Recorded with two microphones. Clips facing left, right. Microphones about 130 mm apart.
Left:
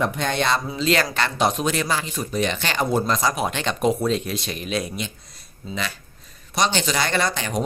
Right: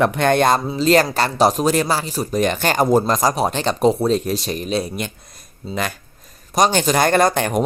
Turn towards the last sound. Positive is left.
turn(degrees=-50)  # may be behind; listen again after turning